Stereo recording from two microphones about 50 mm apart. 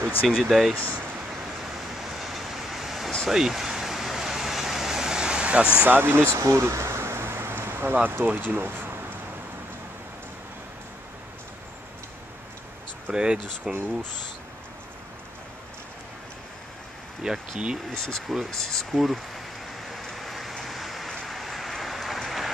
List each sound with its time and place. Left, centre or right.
0.3 s speech: centre
2.0 s vehicle: centre
5.9 s speech: right
6.2 s a sound: right
7.9 s speech: right
13.1 s speech: centre
17.2 s speech: centre
17.9 s speech: centre
18.2 s speech: centre
18.5 s speech: centre
18.9 s speech: centre
19.9 s vehicle: centre
21.1 s rain: centre